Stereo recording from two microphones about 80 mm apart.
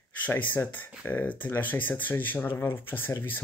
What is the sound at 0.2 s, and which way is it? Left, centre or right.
Speech, left.